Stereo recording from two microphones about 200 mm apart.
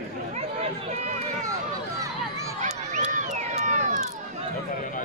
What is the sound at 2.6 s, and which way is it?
Run, 35° right (ahead or behind).